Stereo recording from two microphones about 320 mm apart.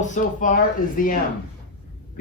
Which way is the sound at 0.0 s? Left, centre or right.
Left.